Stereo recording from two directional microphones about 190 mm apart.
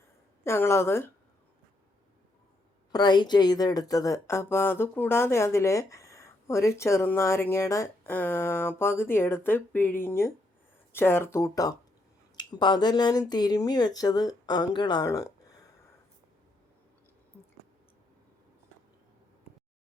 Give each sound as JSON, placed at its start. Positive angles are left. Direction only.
{"t": 0.4, "sound": "speech", "side_deg": 15}
{"t": 2.9, "sound": "speech", "side_deg": 20}